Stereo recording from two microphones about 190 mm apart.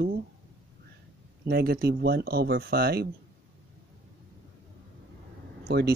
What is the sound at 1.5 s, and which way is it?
Speech, 55° right (ahead or behind).